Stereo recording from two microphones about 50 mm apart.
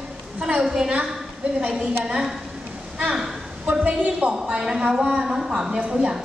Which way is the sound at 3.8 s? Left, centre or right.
Right.